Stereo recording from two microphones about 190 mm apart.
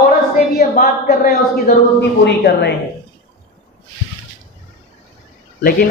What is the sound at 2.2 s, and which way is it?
Speech, 65° left (ahead or behind).